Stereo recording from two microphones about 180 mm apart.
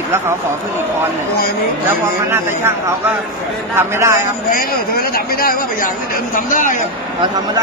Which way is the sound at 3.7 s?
15° right (ahead or behind).